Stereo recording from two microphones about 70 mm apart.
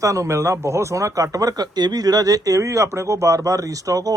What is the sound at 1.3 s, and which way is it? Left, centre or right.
Speech, right.